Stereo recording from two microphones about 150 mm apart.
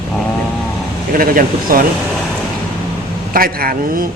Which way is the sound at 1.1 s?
70° right (ahead or behind).